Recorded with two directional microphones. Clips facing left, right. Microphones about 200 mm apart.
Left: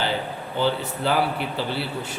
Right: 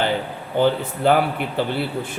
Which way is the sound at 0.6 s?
55° right (ahead or behind).